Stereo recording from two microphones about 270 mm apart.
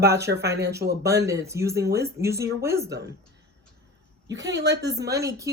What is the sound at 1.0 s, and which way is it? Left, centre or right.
Speech, centre.